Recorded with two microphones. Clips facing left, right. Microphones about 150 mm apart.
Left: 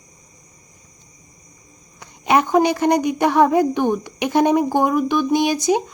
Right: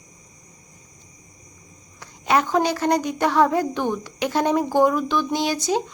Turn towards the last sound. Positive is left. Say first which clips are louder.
# left 5 dB
turn(degrees=15)  # may be behind; listen again after turning